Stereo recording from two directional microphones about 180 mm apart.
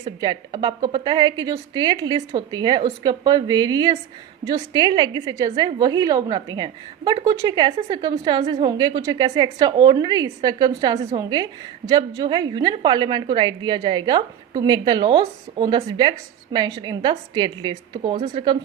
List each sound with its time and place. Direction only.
0.0 s a woman's voice: 25° right (ahead or behind)